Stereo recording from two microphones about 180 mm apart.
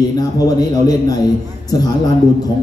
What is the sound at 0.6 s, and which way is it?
Speech, 20° left (ahead or behind).